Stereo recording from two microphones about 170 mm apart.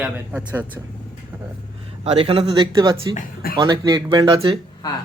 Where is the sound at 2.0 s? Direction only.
30° right (ahead or behind).